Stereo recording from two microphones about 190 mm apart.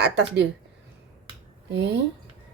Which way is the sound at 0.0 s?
65° right (ahead or behind).